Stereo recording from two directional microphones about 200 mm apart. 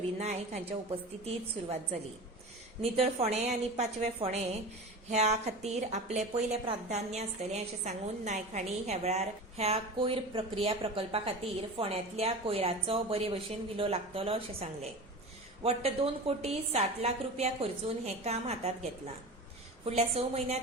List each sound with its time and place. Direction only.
0.2 s a woman's voice: 35° right (ahead or behind)
2.9 s a woman's voice: 30° right (ahead or behind)